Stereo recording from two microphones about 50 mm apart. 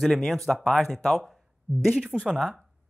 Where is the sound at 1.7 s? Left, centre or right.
Right.